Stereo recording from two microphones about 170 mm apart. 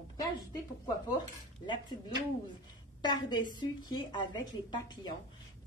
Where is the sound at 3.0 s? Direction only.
25° left (ahead or behind).